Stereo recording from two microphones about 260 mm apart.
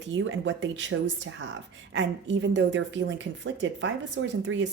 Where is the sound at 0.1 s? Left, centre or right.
Right.